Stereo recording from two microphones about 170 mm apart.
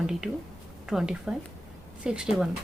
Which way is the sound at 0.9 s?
5° right (ahead or behind).